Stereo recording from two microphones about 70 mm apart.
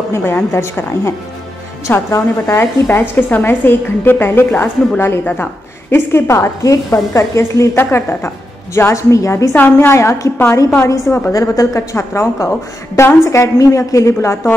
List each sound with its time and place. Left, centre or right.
0.1 s a woman's voice: left
0.5 s a woman's voice: left
2.6 s a woman's voice: left
7.7 s a woman's voice: left
11.3 s a woman's voice: left